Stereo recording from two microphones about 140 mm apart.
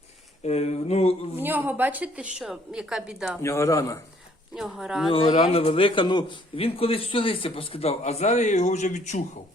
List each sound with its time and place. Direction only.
0.4 s a man's voice: 50° left (ahead or behind)
1.4 s a woman's voice: 15° right (ahead or behind)
3.4 s a man's voice: 20° left (ahead or behind)
4.5 s speech: 5° right (ahead or behind)
5.0 s a man's voice: 40° left (ahead or behind); by 9.2 s 55° left (ahead or behind)